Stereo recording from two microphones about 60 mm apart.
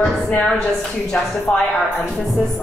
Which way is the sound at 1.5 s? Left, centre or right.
Left.